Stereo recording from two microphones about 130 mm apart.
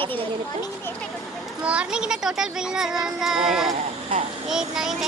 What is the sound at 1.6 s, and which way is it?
A child's voice, 5° right (ahead or behind).